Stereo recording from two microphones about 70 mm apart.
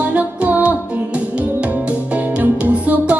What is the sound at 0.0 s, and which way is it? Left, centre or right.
Music, right.